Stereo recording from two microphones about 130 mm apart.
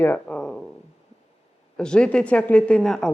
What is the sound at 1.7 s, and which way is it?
A woman's voice, 5° left (ahead or behind).